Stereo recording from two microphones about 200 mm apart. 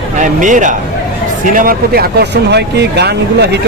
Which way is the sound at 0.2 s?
40° right (ahead or behind).